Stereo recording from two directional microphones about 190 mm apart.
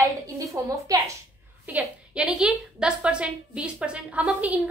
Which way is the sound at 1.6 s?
5° right (ahead or behind).